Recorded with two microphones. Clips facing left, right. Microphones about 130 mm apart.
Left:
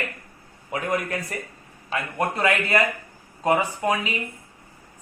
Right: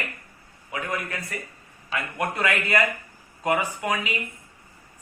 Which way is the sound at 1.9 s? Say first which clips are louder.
Left 2 dB; 30° left (ahead or behind).